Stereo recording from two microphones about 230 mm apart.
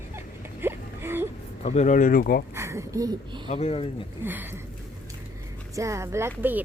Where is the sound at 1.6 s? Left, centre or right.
Left.